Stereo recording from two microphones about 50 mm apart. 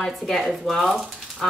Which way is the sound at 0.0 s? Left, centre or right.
Centre.